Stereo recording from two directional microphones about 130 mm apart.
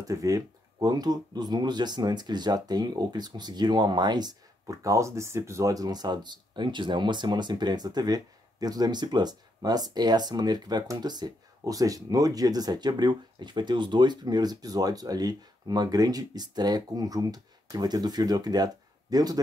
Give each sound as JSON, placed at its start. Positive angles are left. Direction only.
{"t": 0.0, "sound": "speech", "side_deg": -25}